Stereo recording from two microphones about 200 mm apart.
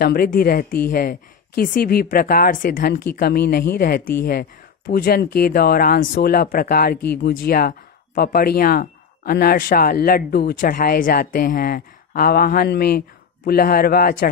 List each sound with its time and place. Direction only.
0.0 s speech: 50° left (ahead or behind)